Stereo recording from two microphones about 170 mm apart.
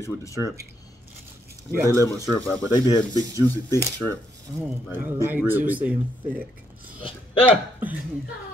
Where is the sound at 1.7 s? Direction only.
20° right (ahead or behind).